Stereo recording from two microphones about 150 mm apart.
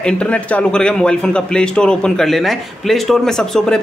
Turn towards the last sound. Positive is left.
turn(degrees=5)  # may be behind; listen again after turning